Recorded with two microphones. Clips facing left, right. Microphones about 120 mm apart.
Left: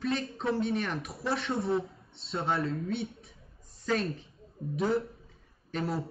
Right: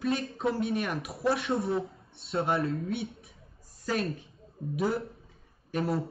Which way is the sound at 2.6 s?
30° left (ahead or behind).